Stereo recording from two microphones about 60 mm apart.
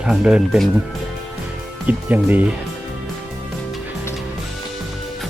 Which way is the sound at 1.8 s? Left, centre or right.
Right.